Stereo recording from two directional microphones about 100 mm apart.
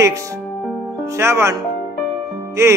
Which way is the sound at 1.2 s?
25° right (ahead or behind).